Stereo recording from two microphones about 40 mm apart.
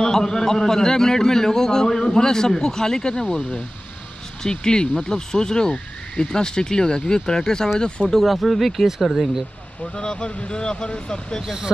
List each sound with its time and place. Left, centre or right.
0.0 s a man's voice: centre
8.1 s speech: centre
8.8 s speech: centre
9.9 s speech: centre
11.4 s speech: centre